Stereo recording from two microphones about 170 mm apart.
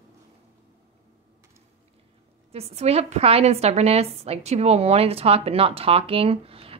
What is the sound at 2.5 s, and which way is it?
A woman's voice, 40° right (ahead or behind).